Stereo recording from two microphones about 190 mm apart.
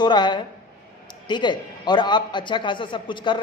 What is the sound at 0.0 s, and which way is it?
A man's voice, 25° left (ahead or behind).